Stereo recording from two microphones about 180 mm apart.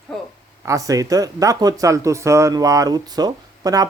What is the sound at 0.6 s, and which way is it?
Speech, 20° right (ahead or behind).